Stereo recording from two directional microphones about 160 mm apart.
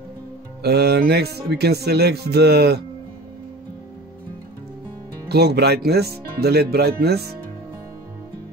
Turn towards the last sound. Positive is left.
turn(degrees=-90)